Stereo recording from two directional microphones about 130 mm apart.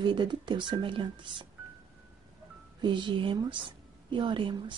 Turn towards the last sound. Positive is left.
turn(degrees=-40)  # may be behind; listen again after turning